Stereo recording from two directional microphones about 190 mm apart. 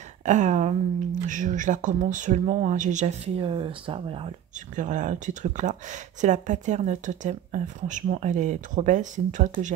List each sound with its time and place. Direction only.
0.2 s speech: 40° right (ahead or behind)
4.7 s speech: 40° right (ahead or behind)